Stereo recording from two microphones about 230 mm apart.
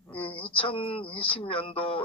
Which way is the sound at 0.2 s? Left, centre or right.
Left.